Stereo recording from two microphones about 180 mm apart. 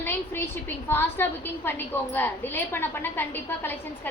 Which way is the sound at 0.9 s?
10° left (ahead or behind).